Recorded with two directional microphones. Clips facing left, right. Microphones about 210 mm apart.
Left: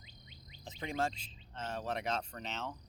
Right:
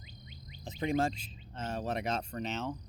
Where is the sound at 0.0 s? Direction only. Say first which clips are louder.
Right 6 dB; 25° left (ahead or behind).